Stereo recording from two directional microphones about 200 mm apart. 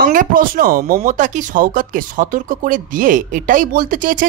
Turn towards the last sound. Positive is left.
turn(degrees=-40)  # may be behind; listen again after turning